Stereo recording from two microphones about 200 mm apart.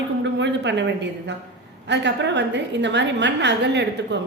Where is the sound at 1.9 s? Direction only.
60° right (ahead or behind).